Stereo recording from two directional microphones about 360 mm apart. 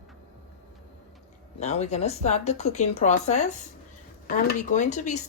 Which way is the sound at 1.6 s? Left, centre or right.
Centre.